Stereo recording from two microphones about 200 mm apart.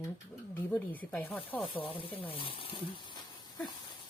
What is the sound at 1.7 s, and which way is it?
Speech, 25° left (ahead or behind).